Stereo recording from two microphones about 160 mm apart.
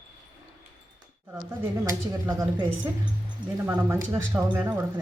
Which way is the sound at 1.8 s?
15° right (ahead or behind).